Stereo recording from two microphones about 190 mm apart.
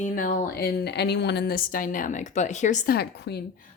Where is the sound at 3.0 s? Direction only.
60° left (ahead or behind).